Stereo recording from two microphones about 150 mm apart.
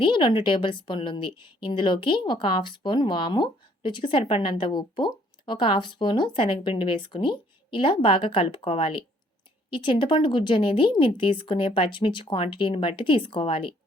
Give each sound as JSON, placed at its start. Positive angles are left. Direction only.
{"t": 0.0, "sound": "a woman's voice", "side_deg": 30}